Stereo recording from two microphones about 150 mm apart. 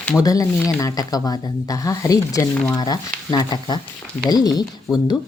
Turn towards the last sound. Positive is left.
turn(degrees=25)  # may be behind; listen again after turning